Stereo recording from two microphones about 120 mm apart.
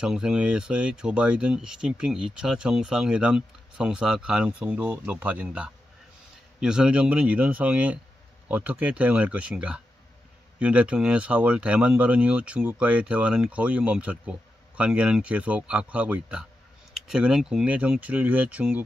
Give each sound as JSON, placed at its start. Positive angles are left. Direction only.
{"t": 0.0, "sound": "speech", "side_deg": -5}